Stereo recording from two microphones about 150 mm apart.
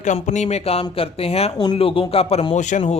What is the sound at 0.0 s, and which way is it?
Speech, 55° left (ahead or behind).